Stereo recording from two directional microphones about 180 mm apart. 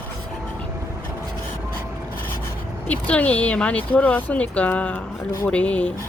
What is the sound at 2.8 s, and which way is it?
Speech, 10° left (ahead or behind).